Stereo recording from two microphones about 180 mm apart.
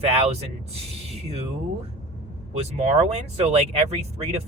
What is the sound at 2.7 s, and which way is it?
Speech, 40° right (ahead or behind).